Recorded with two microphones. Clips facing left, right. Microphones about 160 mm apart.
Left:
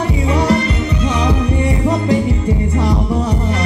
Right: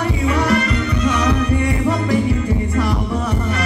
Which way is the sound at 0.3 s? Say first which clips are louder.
Left 3 dB; 25° left (ahead or behind).